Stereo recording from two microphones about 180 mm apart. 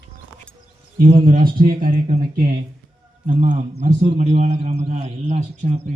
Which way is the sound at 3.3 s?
45° right (ahead or behind).